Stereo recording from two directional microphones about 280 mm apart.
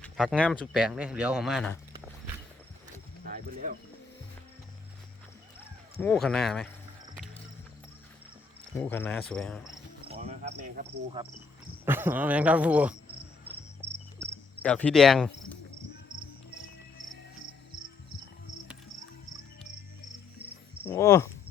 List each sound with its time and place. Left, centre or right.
0.0 s speech: centre
3.2 s speech: right
6.0 s speech: centre
8.8 s speech: centre
10.1 s cricket: right
11.9 s speech: centre
14.6 s speech: centre
20.8 s speech: centre